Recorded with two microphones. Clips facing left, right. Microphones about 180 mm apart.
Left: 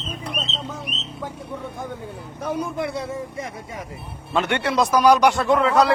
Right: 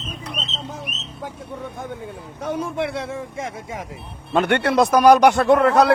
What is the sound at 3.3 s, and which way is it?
Speech, 90° right.